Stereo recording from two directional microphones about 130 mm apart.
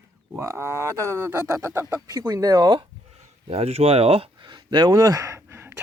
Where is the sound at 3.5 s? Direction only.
50° right (ahead or behind); by 5.8 s 20° right (ahead or behind).